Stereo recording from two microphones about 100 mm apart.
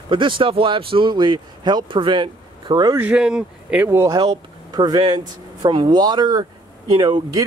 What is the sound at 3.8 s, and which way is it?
Speech, 25° right (ahead or behind).